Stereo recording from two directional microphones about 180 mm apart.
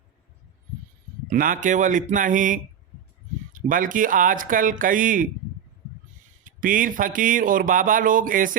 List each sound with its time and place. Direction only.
1.3 s speech: 50° right (ahead or behind)
6.4 s speech: 50° right (ahead or behind)